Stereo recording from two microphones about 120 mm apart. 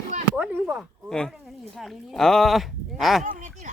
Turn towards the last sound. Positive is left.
turn(degrees=-90)